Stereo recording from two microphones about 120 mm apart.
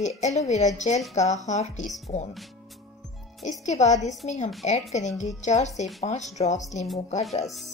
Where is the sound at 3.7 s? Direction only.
75° left (ahead or behind).